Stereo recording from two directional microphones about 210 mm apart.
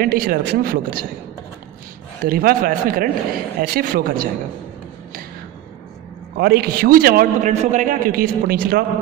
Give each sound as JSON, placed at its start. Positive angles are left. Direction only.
{"t": 0.0, "sound": "a man's voice", "side_deg": -45}
{"t": 2.2, "sound": "a man's voice", "side_deg": -45}
{"t": 6.3, "sound": "a man's voice", "side_deg": -50}